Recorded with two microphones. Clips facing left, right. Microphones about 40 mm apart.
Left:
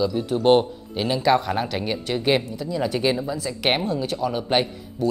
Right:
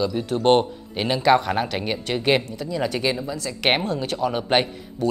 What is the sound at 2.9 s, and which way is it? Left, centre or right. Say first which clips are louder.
Speech: left 2 dB; centre.